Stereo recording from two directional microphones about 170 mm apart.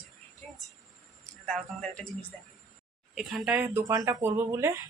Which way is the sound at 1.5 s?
5° left (ahead or behind).